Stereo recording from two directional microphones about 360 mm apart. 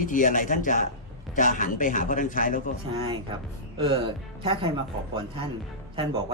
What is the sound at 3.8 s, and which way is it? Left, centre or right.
Speech, centre.